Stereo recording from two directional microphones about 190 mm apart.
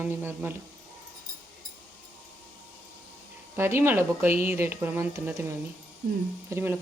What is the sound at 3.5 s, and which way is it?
Speech, 15° right (ahead or behind).